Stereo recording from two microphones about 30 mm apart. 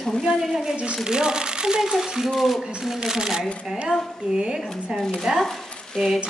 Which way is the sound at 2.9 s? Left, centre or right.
Centre.